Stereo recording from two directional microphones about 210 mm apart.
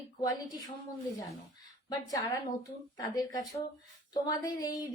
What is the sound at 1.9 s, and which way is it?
Speech, 15° left (ahead or behind).